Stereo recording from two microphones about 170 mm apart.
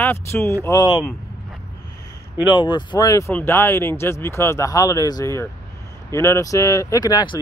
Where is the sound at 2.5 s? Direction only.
25° left (ahead or behind).